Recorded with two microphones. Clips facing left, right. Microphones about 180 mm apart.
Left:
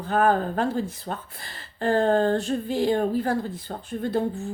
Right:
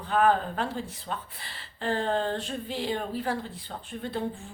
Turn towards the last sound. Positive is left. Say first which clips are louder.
# left 7 dB
turn(degrees=45)  # may be behind; listen again after turning